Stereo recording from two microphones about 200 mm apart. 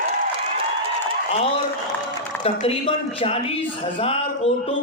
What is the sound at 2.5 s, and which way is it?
Speech, 30° left (ahead or behind).